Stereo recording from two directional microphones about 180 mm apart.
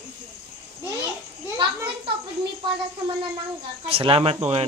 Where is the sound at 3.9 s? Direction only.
30° right (ahead or behind).